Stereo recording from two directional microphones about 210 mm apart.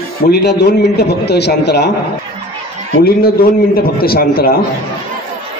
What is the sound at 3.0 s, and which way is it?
A man's voice, 45° left (ahead or behind).